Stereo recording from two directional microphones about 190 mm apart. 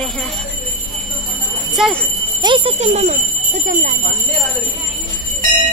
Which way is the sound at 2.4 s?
25° right (ahead or behind).